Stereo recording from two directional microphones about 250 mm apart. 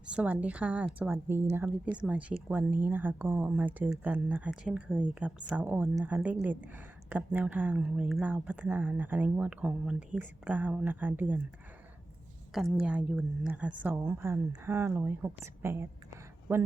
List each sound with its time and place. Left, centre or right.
0.1 s speech: centre
12.5 s speech: centre